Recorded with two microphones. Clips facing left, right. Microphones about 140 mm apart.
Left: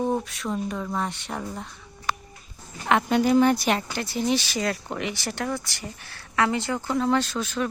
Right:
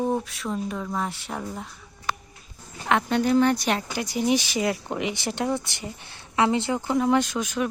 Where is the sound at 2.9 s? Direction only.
5° left (ahead or behind).